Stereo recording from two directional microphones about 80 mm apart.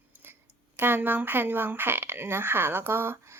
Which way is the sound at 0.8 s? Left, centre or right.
Right.